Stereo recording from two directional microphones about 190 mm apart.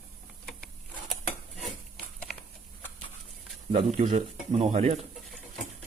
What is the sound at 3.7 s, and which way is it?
Speech, 35° right (ahead or behind).